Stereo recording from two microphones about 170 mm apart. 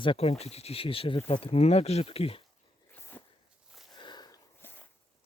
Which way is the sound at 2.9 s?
10° left (ahead or behind).